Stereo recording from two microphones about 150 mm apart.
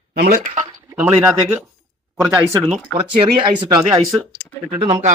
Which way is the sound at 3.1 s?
30° right (ahead or behind).